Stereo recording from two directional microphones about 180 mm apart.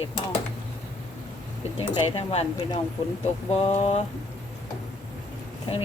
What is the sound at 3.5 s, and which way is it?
Speech, 35° left (ahead or behind).